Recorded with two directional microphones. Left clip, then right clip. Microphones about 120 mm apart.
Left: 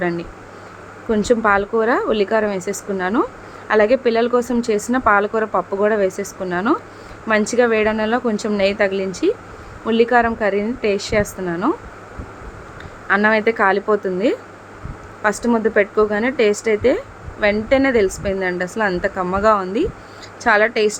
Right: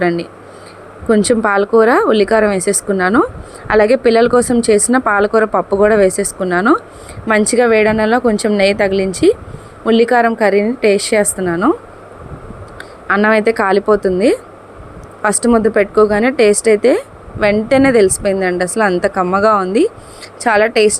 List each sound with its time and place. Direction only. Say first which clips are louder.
1.0 s a woman's voice: right 4 dB; 50° right (ahead or behind)
13.1 s a woman's voice: right 4 dB; 45° right (ahead or behind)